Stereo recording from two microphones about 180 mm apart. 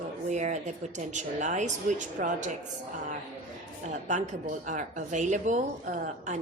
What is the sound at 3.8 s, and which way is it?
A woman's voice, 40° right (ahead or behind).